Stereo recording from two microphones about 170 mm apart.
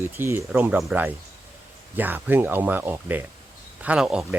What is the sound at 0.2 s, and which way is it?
Speech, 15° right (ahead or behind).